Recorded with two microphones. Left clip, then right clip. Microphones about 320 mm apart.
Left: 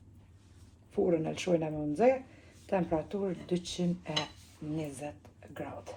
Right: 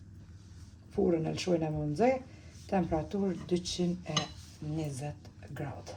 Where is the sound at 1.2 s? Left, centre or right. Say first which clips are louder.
Even; left.